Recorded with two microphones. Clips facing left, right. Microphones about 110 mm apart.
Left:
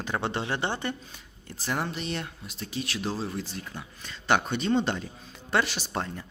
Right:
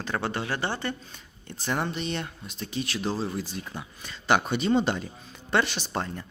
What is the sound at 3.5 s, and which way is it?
Speech, 15° right (ahead or behind).